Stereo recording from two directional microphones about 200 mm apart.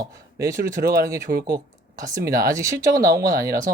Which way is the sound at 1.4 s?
15° right (ahead or behind).